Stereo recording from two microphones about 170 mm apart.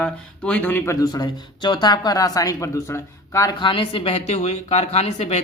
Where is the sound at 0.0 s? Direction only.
5° left (ahead or behind).